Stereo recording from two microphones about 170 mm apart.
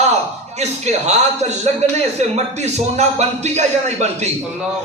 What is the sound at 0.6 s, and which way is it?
A man's voice, 40° right (ahead or behind).